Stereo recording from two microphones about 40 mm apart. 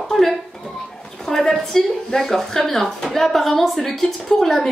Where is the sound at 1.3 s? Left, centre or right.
Centre.